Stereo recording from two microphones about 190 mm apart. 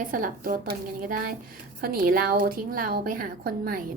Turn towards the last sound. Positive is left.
turn(degrees=-50)  # may be behind; listen again after turning